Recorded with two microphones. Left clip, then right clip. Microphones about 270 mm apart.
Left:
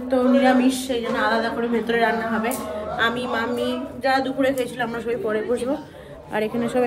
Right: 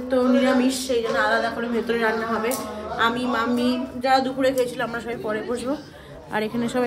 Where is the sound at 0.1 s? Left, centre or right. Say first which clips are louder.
Left 2 dB; centre.